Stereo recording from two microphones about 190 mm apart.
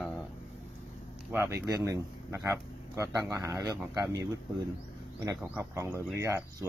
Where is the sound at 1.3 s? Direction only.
15° right (ahead or behind).